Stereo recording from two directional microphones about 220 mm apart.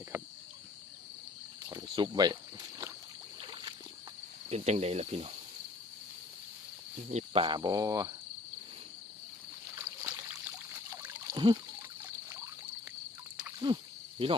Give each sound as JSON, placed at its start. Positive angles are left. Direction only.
{"t": 0.1, "sound": "cricket", "side_deg": -10}
{"t": 1.7, "sound": "snake", "side_deg": -20}
{"t": 3.4, "sound": "vehicle", "side_deg": -20}
{"t": 4.4, "sound": "speech", "side_deg": -30}
{"t": 7.1, "sound": "speech", "side_deg": -30}
{"t": 9.7, "sound": "a sound", "side_deg": -15}
{"t": 12.0, "sound": "trickle", "side_deg": -15}
{"t": 13.7, "sound": "speech", "side_deg": -20}